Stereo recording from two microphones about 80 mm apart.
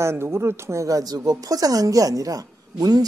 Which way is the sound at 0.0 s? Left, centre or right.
Right.